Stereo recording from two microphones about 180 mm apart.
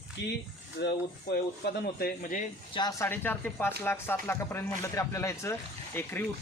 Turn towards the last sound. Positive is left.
turn(degrees=10)  # may be behind; listen again after turning